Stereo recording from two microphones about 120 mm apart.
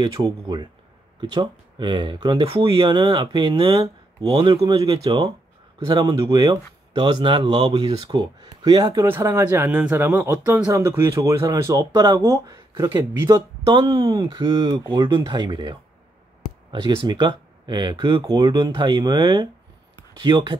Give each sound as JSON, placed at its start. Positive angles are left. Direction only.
{"t": 0.0, "sound": "speech", "side_deg": -40}
{"t": 9.0, "sound": "speech", "side_deg": -20}
{"t": 11.9, "sound": "speech", "side_deg": -40}
{"t": 12.2, "sound": "speech", "side_deg": -25}